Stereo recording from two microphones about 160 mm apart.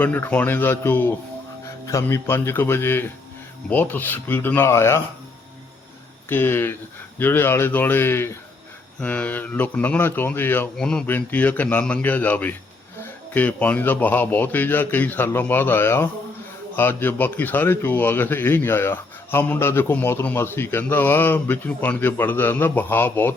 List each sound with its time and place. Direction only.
0.0 s speech: 10° left (ahead or behind)
6.2 s speech: 15° left (ahead or behind)